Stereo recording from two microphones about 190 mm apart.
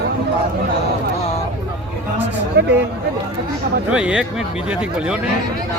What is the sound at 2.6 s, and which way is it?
Speech, 60° right (ahead or behind).